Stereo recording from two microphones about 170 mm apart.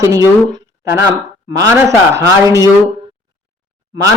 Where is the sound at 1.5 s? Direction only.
20° right (ahead or behind).